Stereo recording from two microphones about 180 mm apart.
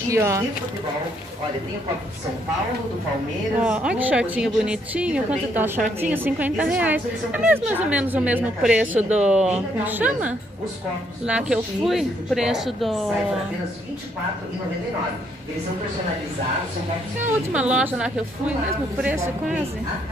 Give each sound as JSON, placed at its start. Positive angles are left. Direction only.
{"t": 0.1, "sound": "a woman's voice", "side_deg": -15}
{"t": 3.6, "sound": "a woman's voice", "side_deg": -5}
{"t": 17.5, "sound": "a woman's voice", "side_deg": -5}